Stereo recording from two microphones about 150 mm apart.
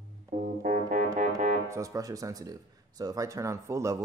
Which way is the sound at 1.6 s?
20° right (ahead or behind).